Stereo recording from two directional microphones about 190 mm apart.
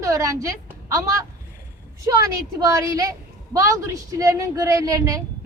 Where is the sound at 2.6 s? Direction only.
15° right (ahead or behind).